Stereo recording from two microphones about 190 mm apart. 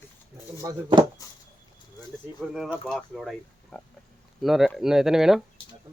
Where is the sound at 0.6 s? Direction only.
20° right (ahead or behind).